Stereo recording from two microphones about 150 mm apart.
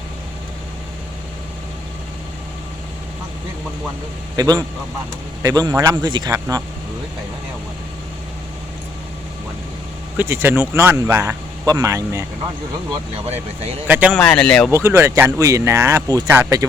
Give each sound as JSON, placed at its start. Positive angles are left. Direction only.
{"t": 4.4, "sound": "a man's voice", "side_deg": -25}
{"t": 10.2, "sound": "a man's voice", "side_deg": -15}
{"t": 13.8, "sound": "speech", "side_deg": -10}
{"t": 14.2, "sound": "speech", "side_deg": 5}
{"t": 14.7, "sound": "a man's voice", "side_deg": -15}